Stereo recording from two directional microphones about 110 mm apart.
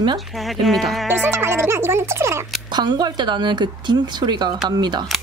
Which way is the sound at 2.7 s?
40° right (ahead or behind).